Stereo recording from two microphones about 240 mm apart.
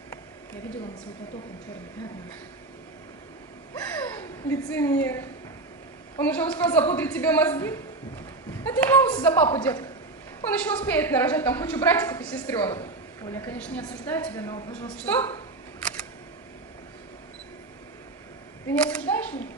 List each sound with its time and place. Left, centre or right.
4.5 s a woman's voice: centre
18.7 s single-lens reflex camera: centre